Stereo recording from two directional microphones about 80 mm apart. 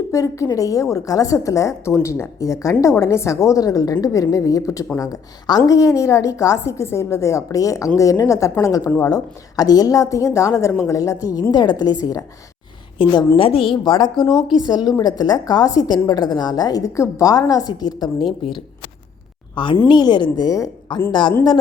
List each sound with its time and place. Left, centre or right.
0.1 s a woman's voice: left
11.5 s a woman's voice: left
13.0 s a woman's voice: left
13.3 s speech: left
14.6 s a woman's voice: left
19.5 s speech: left
19.9 s a woman's voice: left
21.1 s speech: left